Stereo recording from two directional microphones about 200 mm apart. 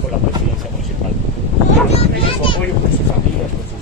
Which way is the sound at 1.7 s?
30° left (ahead or behind).